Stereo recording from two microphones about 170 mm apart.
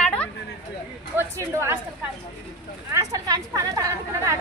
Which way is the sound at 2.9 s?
20° right (ahead or behind).